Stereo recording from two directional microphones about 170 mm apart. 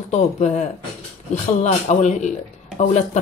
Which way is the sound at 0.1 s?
40° left (ahead or behind).